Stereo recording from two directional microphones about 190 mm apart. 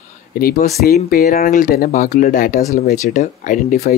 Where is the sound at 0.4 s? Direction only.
50° left (ahead or behind).